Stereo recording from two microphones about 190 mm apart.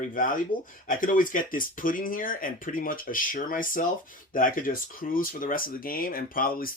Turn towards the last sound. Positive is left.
turn(degrees=50)  # may be behind; listen again after turning